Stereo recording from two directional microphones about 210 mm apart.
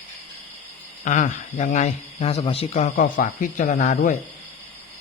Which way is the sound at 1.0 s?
35° left (ahead or behind).